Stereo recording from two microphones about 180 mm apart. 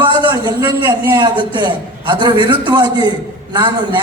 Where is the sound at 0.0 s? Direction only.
25° right (ahead or behind).